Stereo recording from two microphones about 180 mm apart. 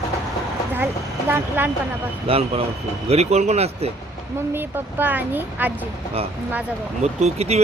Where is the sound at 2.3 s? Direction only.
35° right (ahead or behind).